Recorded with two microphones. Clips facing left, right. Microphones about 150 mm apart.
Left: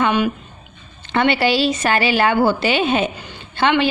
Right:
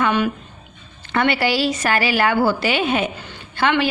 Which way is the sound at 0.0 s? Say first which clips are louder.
Left 1 dB; 15° left (ahead or behind).